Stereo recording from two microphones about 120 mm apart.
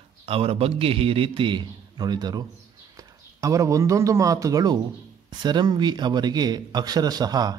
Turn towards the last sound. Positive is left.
turn(degrees=-35)  # may be behind; listen again after turning